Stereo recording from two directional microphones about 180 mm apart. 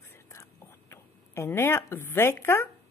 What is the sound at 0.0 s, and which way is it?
Whispering, 15° left (ahead or behind).